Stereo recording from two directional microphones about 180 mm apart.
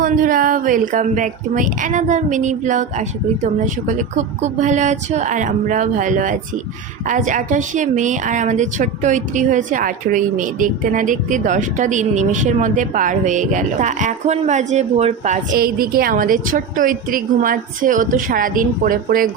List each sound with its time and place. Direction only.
0.0 s a woman's voice: 50° right (ahead or behind)